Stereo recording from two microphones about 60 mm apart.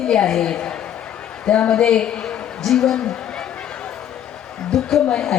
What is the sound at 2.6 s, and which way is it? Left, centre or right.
Speech, centre.